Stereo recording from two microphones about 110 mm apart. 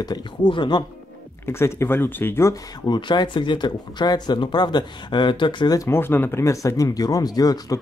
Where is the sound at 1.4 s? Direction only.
25° left (ahead or behind).